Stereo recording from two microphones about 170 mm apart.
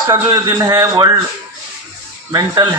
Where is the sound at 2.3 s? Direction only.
20° right (ahead or behind).